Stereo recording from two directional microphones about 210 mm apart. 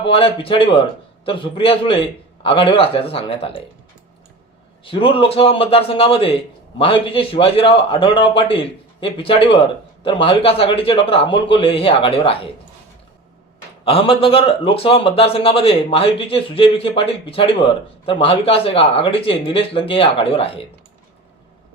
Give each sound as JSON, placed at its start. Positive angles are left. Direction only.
{"t": 0.0, "sound": "a man's voice", "side_deg": 25}
{"t": 4.9, "sound": "a man's voice", "side_deg": 25}
{"t": 13.8, "sound": "a man's voice", "side_deg": 25}